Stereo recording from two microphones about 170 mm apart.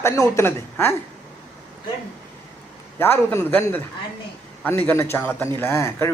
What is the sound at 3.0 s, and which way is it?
Speech, 15° left (ahead or behind).